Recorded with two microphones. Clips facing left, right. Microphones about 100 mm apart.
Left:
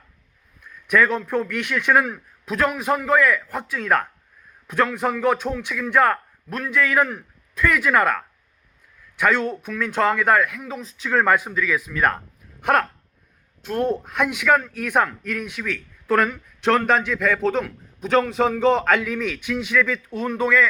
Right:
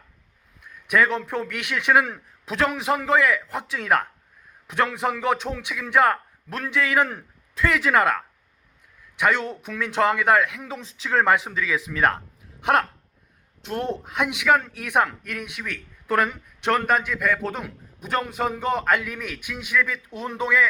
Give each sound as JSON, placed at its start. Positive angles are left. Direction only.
{"t": 0.6, "sound": "a sound", "side_deg": -15}
{"t": 1.3, "sound": "a man's voice", "side_deg": -20}
{"t": 9.1, "sound": "a man's voice", "side_deg": -20}
{"t": 10.6, "sound": "a man's voice", "side_deg": -30}
{"t": 13.6, "sound": "a man's voice", "side_deg": -20}